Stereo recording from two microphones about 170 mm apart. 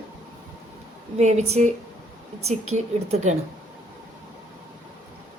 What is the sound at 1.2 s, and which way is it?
A woman's voice, 40° right (ahead or behind).